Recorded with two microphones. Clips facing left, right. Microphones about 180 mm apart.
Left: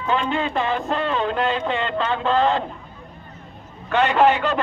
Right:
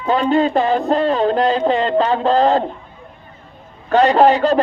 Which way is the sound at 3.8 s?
35° right (ahead or behind).